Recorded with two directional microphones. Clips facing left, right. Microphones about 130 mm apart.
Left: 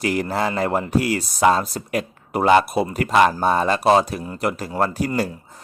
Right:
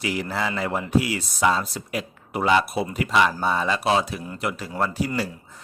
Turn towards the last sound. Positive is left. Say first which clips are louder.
# left 4 dB
turn(degrees=45)  # may be behind; listen again after turning